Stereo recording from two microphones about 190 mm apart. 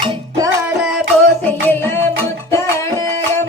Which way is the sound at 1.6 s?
10° left (ahead or behind).